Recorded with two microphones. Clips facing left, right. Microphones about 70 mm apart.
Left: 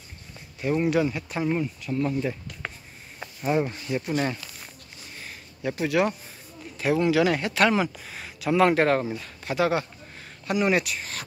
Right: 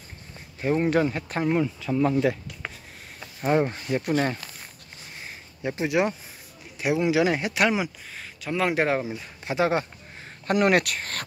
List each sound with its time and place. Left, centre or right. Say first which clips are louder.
0.6 s speech: right 1 dB; right
1.6 s speech: right 4 dB; right
3.6 s speech: right 3 dB; right
5.2 s a sound: even; right
6.8 s speech: left 1 dB; centre
8.1 s speech: left 5 dB; centre
8.7 s speech: left 2 dB; centre; by 9.8 s right
10.4 s speech: right 3 dB; right